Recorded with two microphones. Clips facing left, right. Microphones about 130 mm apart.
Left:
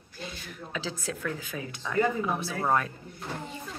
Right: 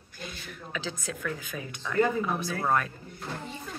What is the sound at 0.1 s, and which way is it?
Speech, 30° left (ahead or behind).